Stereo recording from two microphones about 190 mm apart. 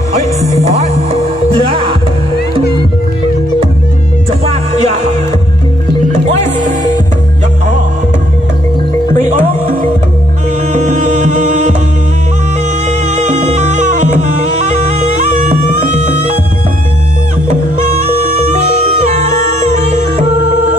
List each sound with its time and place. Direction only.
0.2 s speech: 35° right (ahead or behind)
1.5 s music: 30° right (ahead or behind)
4.5 s music: 35° right (ahead or behind)
9.1 s music: 40° right (ahead or behind)
12.8 s music: 40° right (ahead or behind)
18.5 s music: 40° right (ahead or behind)